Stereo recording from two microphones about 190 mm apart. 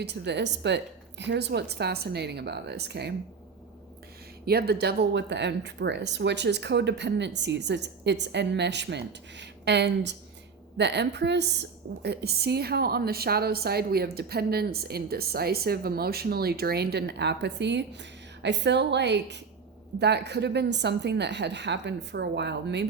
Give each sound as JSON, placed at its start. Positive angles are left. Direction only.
{"t": 0.0, "sound": "a woman's voice", "side_deg": -60}
{"t": 4.4, "sound": "a woman's voice", "side_deg": -55}